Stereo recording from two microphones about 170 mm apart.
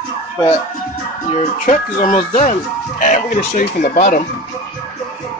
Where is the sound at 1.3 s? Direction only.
45° left (ahead or behind).